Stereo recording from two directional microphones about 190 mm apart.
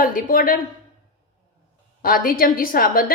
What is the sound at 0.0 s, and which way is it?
Speech, 50° left (ahead or behind).